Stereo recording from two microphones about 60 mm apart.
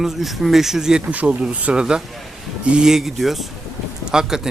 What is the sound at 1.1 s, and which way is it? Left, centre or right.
Speech, right.